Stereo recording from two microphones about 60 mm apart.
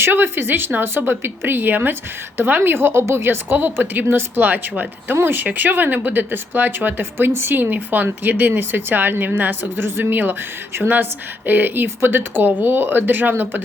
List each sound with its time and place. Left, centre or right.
0.0 s speech: right
3.5 s speech: right